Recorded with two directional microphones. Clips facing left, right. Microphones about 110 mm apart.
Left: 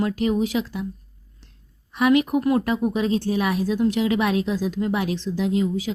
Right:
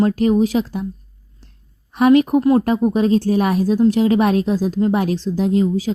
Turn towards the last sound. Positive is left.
turn(degrees=-35)  # may be behind; listen again after turning